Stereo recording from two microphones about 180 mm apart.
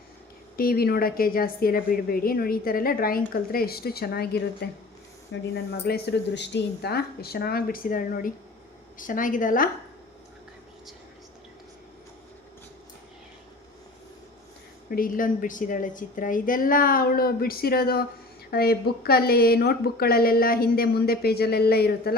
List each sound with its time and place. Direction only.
0.5 s a woman's voice: 55° left (ahead or behind)
14.8 s a woman's voice: 50° left (ahead or behind)